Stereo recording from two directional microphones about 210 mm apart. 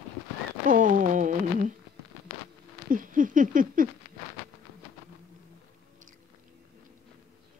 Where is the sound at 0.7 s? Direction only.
40° right (ahead or behind).